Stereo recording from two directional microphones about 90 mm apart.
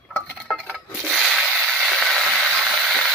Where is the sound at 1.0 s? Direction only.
Centre (ahead or behind).